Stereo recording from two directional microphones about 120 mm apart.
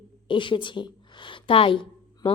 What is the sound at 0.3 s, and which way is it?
A woman's voice, 45° left (ahead or behind).